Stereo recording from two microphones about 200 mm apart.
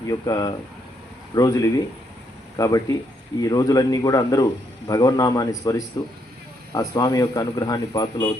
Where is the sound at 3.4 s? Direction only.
20° left (ahead or behind).